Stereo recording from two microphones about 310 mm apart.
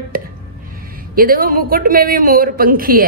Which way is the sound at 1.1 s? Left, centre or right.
Right.